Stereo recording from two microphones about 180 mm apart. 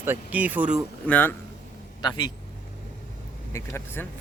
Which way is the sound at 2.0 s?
20° left (ahead or behind).